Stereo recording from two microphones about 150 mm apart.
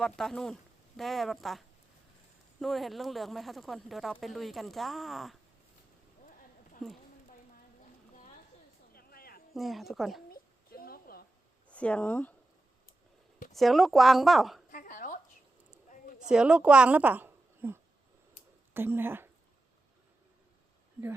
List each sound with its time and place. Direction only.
0.2 s speech: 5° left (ahead or behind)
6.8 s speech: 5° left (ahead or behind)
8.9 s a sound: 80° left
9.6 s speech: centre (ahead or behind)
10.3 s a sound: 80° left
11.7 s speech: 10° left (ahead or behind)
13.5 s speech: centre (ahead or behind)
14.7 s a sound: 60° left (ahead or behind)
16.3 s a woman's voice: 5° right (ahead or behind)